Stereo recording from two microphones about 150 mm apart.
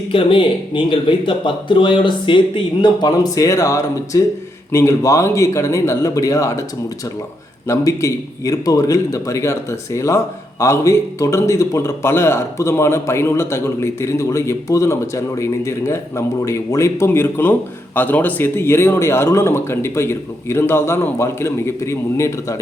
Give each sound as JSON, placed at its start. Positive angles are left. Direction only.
{"t": 0.1, "sound": "a man's voice", "side_deg": 35}
{"t": 7.7, "sound": "a man's voice", "side_deg": 20}